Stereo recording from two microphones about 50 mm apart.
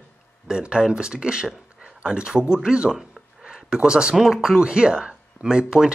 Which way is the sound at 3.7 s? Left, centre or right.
Centre.